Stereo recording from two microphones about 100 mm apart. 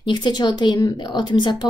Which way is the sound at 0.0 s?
50° left (ahead or behind).